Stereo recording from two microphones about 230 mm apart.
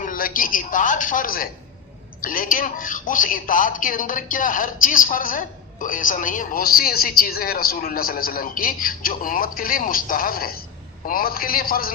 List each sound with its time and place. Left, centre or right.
0.0 s speech: left